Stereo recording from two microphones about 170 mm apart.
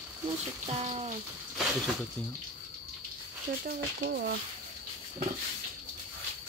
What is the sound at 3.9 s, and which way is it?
Speech, 70° right (ahead or behind).